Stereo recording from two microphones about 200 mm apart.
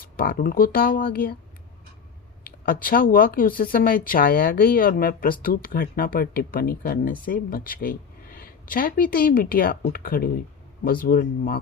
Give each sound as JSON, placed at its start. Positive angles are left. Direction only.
{"t": 0.0, "sound": "speech", "side_deg": 45}
{"t": 2.4, "sound": "speech", "side_deg": 45}